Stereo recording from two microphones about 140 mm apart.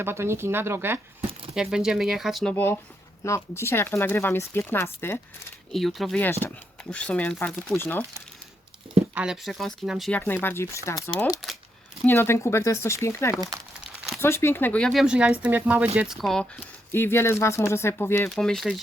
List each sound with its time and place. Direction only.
0.0 s speech: 20° right (ahead or behind)
1.5 s speech: 5° right (ahead or behind); by 5.2 s 15° left (ahead or behind)
5.7 s speech: centre (ahead or behind)
9.1 s speech: 5° right (ahead or behind)
10.1 s speech: 15° left (ahead or behind)
15.0 s speech: 5° right (ahead or behind); by 18.3 s 15° left (ahead or behind)
18.3 s speech: centre (ahead or behind)